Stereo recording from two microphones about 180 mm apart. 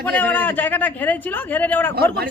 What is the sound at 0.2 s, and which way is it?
A man's voice, 10° left (ahead or behind).